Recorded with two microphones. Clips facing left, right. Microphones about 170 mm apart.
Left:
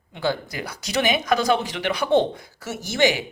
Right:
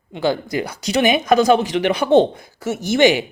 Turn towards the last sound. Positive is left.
turn(degrees=-25)  # may be behind; listen again after turning